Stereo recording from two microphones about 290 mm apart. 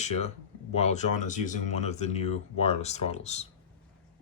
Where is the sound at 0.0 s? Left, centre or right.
Left.